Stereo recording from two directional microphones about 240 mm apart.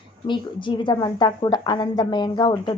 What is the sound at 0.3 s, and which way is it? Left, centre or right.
A woman's voice, centre.